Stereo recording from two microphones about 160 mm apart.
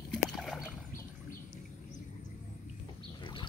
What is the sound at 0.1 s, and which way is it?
Rowboat, centre (ahead or behind).